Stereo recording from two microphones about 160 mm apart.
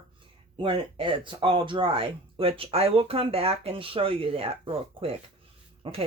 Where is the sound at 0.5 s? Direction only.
30° right (ahead or behind).